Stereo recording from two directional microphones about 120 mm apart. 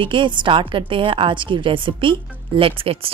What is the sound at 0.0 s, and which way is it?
A woman's voice, 45° right (ahead or behind).